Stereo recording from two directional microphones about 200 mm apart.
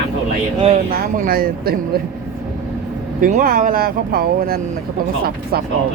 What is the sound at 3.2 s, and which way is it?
Speech, 40° right (ahead or behind).